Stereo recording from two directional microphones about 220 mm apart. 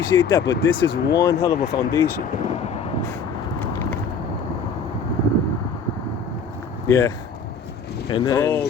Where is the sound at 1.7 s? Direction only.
20° left (ahead or behind).